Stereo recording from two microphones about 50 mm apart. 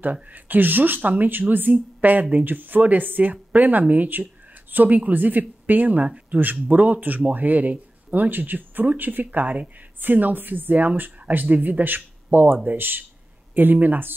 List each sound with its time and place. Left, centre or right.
0.0 s speech: right
6.0 s speech: right
6.4 s speech: right